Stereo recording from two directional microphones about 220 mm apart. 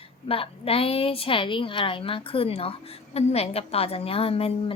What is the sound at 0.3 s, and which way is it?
A woman's voice, 25° left (ahead or behind).